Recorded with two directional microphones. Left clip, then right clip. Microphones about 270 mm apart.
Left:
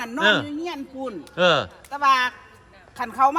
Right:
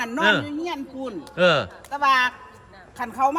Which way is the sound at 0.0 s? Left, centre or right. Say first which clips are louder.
Even; centre.